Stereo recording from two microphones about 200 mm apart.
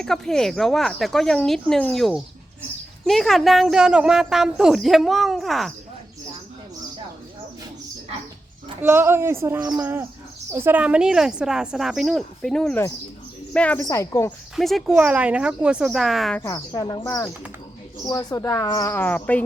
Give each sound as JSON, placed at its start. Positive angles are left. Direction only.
{"t": 0.0, "sound": "a woman's voice", "side_deg": 0}
{"t": 8.8, "sound": "a woman's voice", "side_deg": -10}
{"t": 14.5, "sound": "a woman's voice", "side_deg": 0}
{"t": 16.4, "sound": "speech", "side_deg": 15}